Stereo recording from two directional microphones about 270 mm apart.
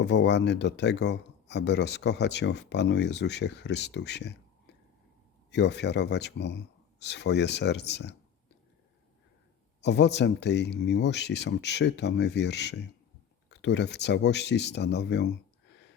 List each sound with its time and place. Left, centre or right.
0.0 s speech: left
9.8 s speech: left